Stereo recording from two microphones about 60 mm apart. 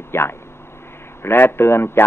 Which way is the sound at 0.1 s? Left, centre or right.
Left.